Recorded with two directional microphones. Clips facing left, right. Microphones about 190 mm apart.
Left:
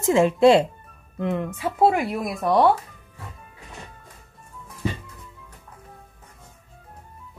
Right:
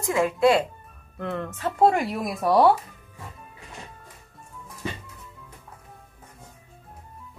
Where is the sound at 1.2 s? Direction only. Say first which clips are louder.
Left 3 dB; 15° left (ahead or behind); by 2.8 s centre (ahead or behind).